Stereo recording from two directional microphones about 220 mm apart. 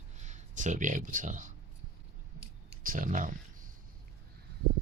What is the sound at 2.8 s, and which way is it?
Speech, 40° right (ahead or behind).